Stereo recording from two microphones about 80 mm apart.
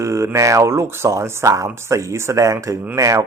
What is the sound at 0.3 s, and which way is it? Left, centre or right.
Speech, right.